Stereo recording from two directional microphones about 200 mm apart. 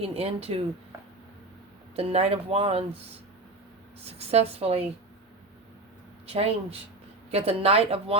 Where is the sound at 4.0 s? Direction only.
30° right (ahead or behind).